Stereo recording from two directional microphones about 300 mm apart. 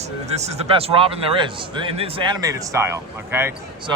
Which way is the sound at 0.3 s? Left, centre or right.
Right.